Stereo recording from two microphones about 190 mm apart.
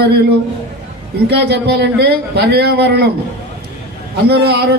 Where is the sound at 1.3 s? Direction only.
60° right (ahead or behind).